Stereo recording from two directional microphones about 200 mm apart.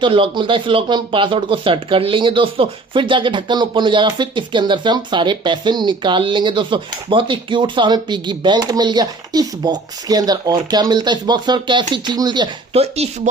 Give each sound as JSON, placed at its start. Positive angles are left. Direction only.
{"t": 0.0, "sound": "speech", "side_deg": -25}